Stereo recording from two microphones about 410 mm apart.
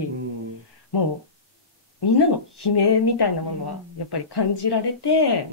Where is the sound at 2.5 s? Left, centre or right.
Left.